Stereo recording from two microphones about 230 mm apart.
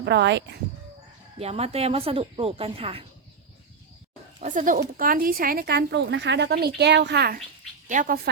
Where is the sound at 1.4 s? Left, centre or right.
Right.